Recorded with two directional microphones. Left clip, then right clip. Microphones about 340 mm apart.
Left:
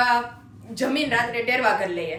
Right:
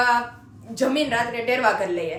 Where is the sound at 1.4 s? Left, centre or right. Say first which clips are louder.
Right 1 dB; centre.